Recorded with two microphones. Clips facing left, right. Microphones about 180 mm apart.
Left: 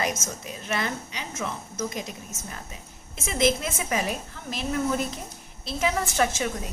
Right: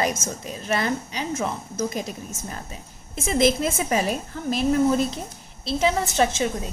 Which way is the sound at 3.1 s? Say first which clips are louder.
Right 4 dB; 35° right (ahead or behind).